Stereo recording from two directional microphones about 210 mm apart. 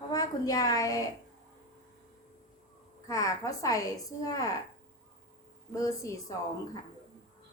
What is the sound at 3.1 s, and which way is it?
A woman's voice, 15° left (ahead or behind).